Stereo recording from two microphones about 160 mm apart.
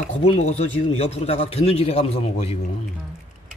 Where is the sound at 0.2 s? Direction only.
40° left (ahead or behind).